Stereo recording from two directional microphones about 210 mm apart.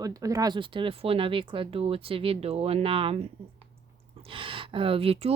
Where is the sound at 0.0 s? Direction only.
15° right (ahead or behind).